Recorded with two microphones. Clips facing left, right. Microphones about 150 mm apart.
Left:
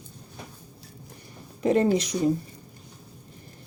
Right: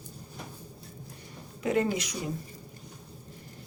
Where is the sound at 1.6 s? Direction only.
35° left (ahead or behind).